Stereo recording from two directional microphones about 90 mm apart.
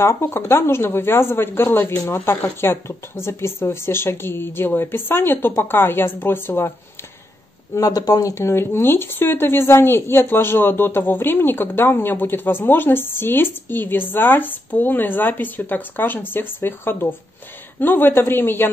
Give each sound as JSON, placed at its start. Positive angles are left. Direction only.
{"t": 0.0, "sound": "speech", "side_deg": 30}
{"t": 7.7, "sound": "speech", "side_deg": 40}